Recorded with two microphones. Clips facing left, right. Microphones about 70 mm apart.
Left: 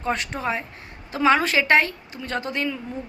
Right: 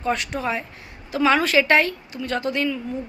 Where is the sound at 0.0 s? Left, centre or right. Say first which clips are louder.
Right 1 dB; left.